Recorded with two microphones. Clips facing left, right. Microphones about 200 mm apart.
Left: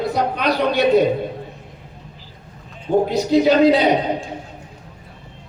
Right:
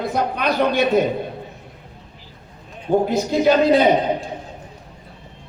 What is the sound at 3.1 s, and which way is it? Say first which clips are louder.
Speech: left 3 dB; 50° right (ahead or behind).